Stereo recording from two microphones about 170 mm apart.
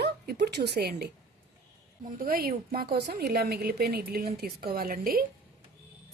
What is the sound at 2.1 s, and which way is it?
A woman's voice, 55° right (ahead or behind).